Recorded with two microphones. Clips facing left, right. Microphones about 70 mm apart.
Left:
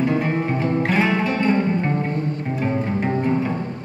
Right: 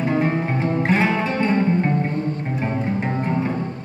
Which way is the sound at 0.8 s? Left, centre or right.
Right.